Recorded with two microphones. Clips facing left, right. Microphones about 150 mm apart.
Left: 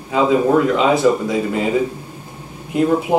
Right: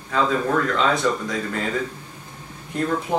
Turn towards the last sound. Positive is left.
turn(degrees=15)  # may be behind; listen again after turning